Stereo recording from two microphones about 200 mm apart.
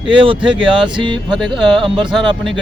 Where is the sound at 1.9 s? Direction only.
25° right (ahead or behind).